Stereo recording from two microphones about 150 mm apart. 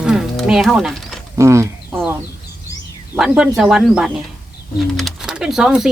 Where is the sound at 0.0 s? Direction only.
5° right (ahead or behind).